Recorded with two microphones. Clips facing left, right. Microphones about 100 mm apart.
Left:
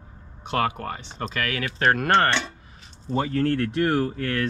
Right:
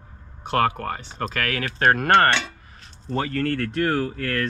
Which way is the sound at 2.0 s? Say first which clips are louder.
Right 4 dB; 55° right (ahead or behind).